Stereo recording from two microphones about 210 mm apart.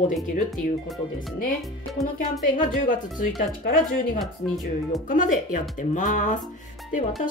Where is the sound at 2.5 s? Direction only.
40° left (ahead or behind).